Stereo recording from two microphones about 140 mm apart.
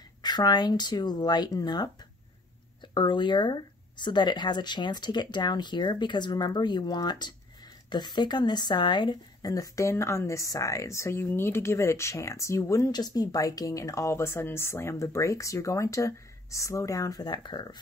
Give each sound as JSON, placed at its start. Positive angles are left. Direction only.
{"t": 0.2, "sound": "speech", "side_deg": 30}
{"t": 2.9, "sound": "speech", "side_deg": 35}